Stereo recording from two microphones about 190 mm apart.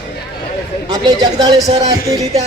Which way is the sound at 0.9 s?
20° right (ahead or behind).